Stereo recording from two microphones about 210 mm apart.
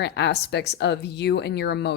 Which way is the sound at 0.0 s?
55° left (ahead or behind).